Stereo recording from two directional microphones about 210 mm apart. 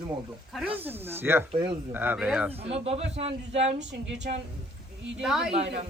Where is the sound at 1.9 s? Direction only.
10° right (ahead or behind).